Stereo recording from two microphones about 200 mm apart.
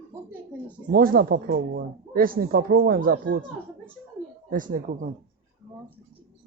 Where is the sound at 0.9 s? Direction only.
45° right (ahead or behind).